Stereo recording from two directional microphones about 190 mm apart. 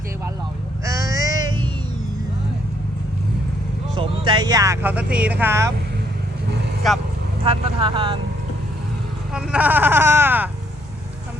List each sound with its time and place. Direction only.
0.9 s a sound: 15° right (ahead or behind)
3.9 s speech: 25° right (ahead or behind)
6.8 s speech: centre (ahead or behind)
7.4 s speech: 30° right (ahead or behind)
9.3 s speech: 5° right (ahead or behind)